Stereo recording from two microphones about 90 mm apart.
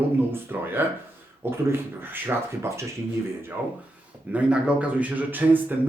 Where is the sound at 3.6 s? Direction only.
20° right (ahead or behind).